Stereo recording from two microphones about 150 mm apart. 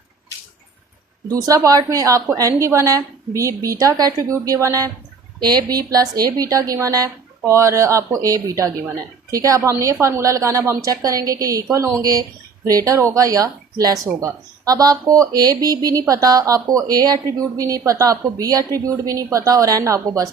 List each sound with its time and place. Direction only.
1.3 s speech: 25° right (ahead or behind)